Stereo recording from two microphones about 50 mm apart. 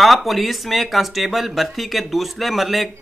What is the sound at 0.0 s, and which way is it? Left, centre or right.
Speech, centre.